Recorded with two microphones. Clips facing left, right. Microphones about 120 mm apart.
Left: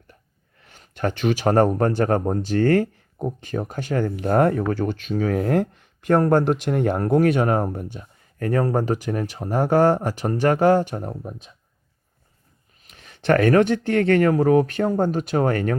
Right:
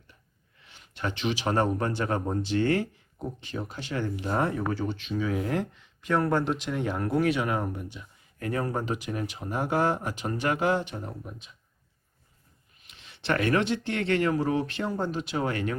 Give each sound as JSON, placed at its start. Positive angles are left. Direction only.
{"t": 0.6, "sound": "speech", "side_deg": 45}
{"t": 12.8, "sound": "speech", "side_deg": 45}